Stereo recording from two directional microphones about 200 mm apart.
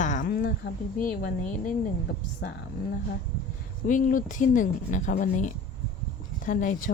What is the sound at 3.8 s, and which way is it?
A woman's voice, 40° left (ahead or behind).